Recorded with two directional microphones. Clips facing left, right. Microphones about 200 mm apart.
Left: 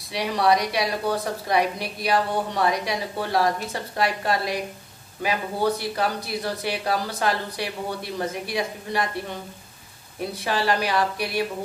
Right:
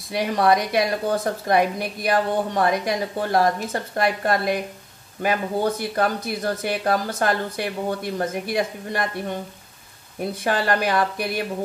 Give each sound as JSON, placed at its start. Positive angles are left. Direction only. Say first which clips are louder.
{"t": 0.1, "sound": "a woman's voice", "louder": "right 2 dB", "side_deg": -50}
{"t": 10.4, "sound": "a woman's voice", "louder": "right 2 dB", "side_deg": -50}